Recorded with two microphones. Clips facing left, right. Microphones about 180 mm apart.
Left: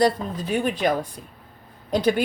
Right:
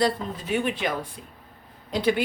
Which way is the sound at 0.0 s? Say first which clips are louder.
Left 4 dB; 40° left (ahead or behind).